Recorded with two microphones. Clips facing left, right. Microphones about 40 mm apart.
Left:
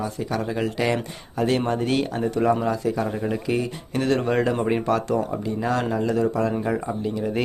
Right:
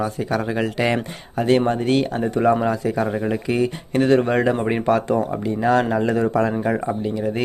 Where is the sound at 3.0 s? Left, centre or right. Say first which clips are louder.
Right 3 dB; centre.